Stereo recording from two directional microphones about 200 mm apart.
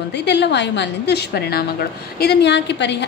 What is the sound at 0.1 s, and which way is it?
A woman's voice, 60° left (ahead or behind).